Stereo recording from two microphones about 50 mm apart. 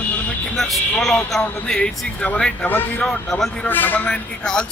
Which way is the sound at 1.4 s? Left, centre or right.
Left.